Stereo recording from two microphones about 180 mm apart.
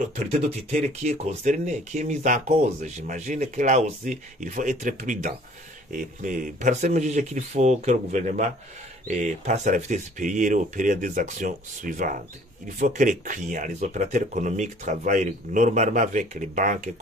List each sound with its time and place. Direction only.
0.7 s speech: 40° right (ahead or behind)